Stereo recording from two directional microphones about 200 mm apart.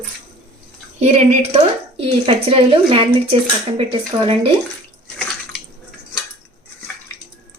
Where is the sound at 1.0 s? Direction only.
35° right (ahead or behind).